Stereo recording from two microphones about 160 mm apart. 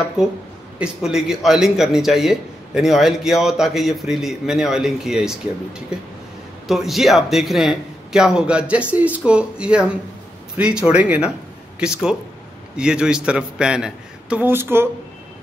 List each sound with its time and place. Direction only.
0.7 s a man's voice: 5° right (ahead or behind)
6.7 s a man's voice: centre (ahead or behind)